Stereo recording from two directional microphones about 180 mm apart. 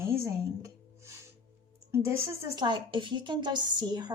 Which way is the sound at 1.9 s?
15° right (ahead or behind).